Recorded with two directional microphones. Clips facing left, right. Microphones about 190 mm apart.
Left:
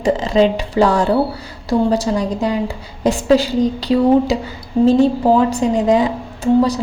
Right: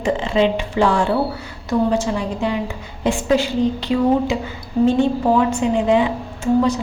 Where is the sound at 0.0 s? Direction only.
40° left (ahead or behind).